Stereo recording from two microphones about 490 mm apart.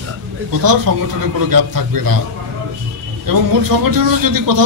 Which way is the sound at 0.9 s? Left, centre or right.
Right.